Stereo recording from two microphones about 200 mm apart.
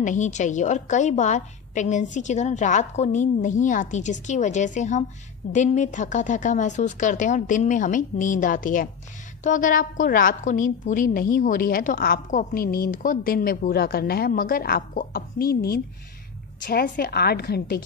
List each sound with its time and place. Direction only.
0.0 s a woman's voice: 40° left (ahead or behind)